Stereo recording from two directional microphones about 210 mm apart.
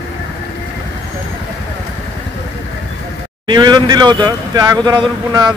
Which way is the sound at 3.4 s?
20° right (ahead or behind).